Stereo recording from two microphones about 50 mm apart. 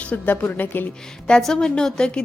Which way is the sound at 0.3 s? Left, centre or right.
Left.